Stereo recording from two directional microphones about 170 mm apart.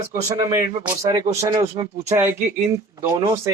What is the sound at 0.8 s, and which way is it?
Speech, 15° right (ahead or behind).